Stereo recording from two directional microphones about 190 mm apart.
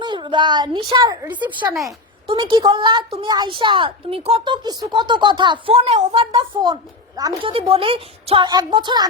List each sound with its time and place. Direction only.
0.0 s a woman's voice: 25° right (ahead or behind)